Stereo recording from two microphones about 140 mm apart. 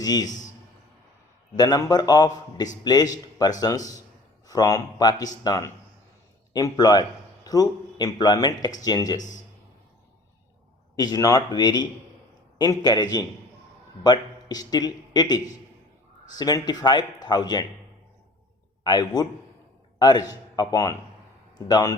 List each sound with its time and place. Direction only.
0.0 s speech: 30° left (ahead or behind)
1.5 s a man's voice: 25° left (ahead or behind)
10.9 s speech: 25° left (ahead or behind)
18.8 s a man's voice: 30° left (ahead or behind)